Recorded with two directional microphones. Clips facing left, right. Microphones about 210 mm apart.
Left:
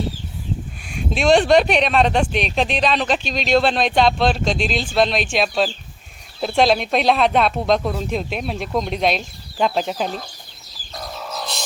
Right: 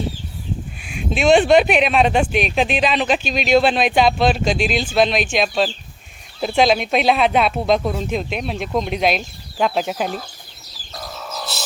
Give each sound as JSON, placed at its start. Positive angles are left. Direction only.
{"t": 0.9, "sound": "speech", "side_deg": 0}
{"t": 10.9, "sound": "chicken", "side_deg": 0}